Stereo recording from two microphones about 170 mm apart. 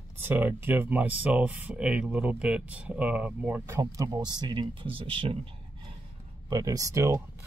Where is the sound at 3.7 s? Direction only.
20° right (ahead or behind).